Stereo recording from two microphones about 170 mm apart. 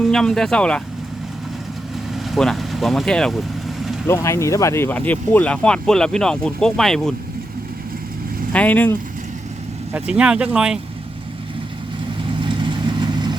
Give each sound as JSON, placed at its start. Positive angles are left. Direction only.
{"t": 0.0, "sound": "speech", "side_deg": 5}
{"t": 2.1, "sound": "speech", "side_deg": 0}
{"t": 4.0, "sound": "speech", "side_deg": 15}
{"t": 8.5, "sound": "speech", "side_deg": 10}
{"t": 9.9, "sound": "speech", "side_deg": -5}
{"t": 12.4, "sound": "vehicle", "side_deg": -30}